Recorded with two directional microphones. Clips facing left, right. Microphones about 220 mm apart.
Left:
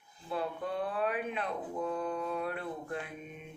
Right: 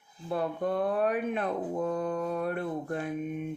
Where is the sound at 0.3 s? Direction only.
45° right (ahead or behind).